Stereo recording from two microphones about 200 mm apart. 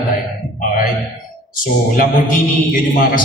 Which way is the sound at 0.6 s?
40° left (ahead or behind).